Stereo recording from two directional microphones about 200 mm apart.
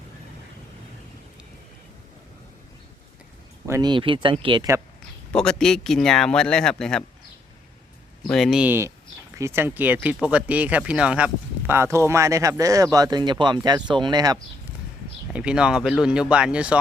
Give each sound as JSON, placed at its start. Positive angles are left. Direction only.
{"t": 3.7, "sound": "speech", "side_deg": -20}
{"t": 5.3, "sound": "speech", "side_deg": 5}
{"t": 8.2, "sound": "speech", "side_deg": 0}
{"t": 15.3, "sound": "speech", "side_deg": -5}